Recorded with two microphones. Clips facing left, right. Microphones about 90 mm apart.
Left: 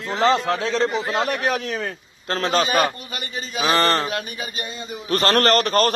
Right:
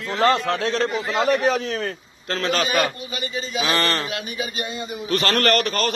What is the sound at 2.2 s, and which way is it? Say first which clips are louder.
Speech: left 2 dB; 35° left (ahead or behind).